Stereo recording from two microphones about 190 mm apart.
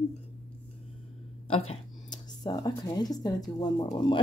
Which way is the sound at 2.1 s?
20° left (ahead or behind).